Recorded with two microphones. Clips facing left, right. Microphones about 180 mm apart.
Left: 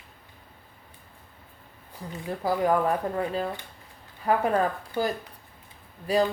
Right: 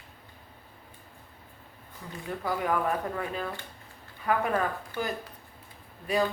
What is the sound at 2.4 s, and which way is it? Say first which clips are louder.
Speech: left 5 dB; 35° left (ahead or behind).